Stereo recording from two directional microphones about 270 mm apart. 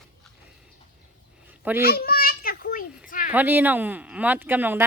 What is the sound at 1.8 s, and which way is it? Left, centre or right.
Children playing, left.